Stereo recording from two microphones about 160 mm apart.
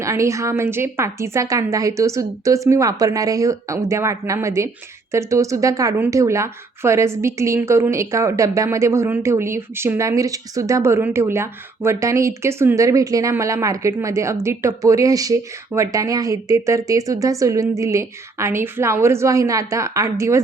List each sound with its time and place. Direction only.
0.0 s a woman's voice: 20° right (ahead or behind)